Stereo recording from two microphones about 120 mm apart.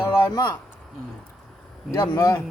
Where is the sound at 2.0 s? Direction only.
25° left (ahead or behind).